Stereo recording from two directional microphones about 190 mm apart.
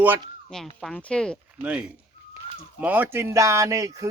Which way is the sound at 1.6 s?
5° right (ahead or behind).